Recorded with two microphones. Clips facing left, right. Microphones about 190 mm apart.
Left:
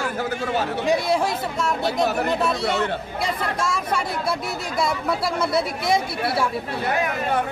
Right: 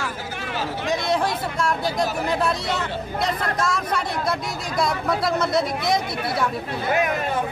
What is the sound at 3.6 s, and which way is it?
Speech, 5° left (ahead or behind).